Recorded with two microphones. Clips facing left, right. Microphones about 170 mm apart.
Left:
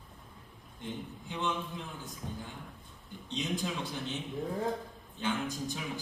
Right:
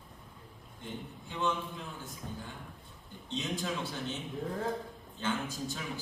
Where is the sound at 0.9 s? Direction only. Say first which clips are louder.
Left 2 dB; 15° left (ahead or behind).